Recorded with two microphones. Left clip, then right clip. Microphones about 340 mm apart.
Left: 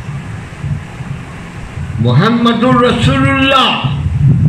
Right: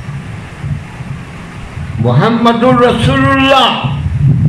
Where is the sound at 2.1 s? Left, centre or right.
Centre.